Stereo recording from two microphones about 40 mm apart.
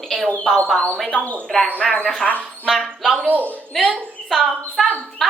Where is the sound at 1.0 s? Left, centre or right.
Left.